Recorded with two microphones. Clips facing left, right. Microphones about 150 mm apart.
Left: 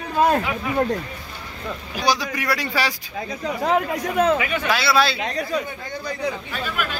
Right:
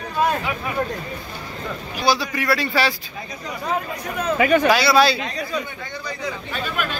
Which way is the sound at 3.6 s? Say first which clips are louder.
Left 5 dB; 85° left.